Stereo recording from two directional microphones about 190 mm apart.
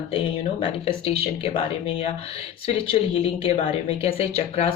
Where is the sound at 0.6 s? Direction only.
30° left (ahead or behind).